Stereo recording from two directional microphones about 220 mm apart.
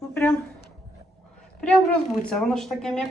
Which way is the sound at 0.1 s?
10° left (ahead or behind).